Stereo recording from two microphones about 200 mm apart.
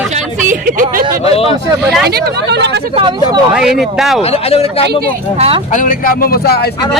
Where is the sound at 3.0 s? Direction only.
25° right (ahead or behind).